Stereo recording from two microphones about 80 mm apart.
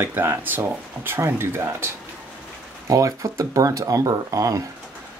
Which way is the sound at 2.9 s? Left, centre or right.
Right.